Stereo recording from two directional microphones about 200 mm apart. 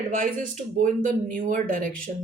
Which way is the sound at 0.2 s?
40° right (ahead or behind).